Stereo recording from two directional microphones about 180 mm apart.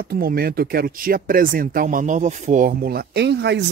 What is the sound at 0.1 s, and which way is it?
Speech, 55° right (ahead or behind).